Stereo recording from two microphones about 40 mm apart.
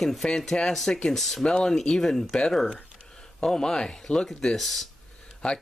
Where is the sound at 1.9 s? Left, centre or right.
Centre.